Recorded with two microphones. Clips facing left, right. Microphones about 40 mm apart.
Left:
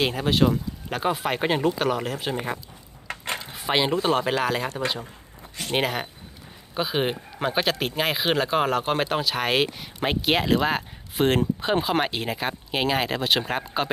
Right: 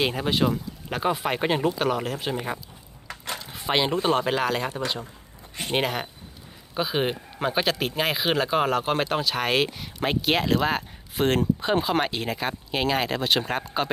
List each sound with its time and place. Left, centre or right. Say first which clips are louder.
0.0 s speech: left 2 dB; centre
3.1 s mechanisms: left 3 dB; left
3.5 s a sound: even; centre
3.9 s speech: even; centre
5.7 s speech: left 1 dB; centre